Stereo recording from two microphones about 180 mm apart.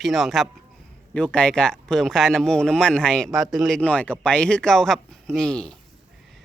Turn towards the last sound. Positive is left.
turn(degrees=5)  # may be behind; listen again after turning